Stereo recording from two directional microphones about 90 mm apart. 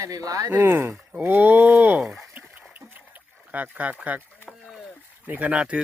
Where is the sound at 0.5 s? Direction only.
25° right (ahead or behind); by 2.5 s 5° right (ahead or behind).